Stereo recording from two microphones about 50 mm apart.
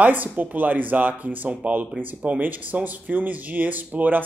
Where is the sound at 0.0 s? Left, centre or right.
Right.